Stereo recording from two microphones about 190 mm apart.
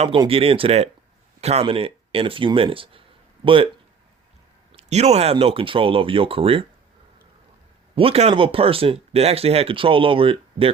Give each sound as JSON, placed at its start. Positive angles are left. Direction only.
{"t": 0.0, "sound": "speech", "side_deg": -30}
{"t": 4.7, "sound": "speech", "side_deg": -35}
{"t": 7.9, "sound": "speech", "side_deg": -30}